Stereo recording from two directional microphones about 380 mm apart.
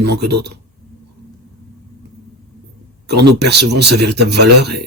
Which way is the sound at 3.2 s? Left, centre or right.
Right.